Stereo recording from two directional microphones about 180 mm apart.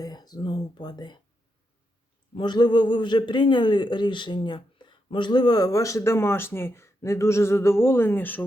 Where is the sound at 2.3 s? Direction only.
25° left (ahead or behind).